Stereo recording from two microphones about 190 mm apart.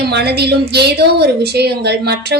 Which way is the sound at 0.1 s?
60° right (ahead or behind).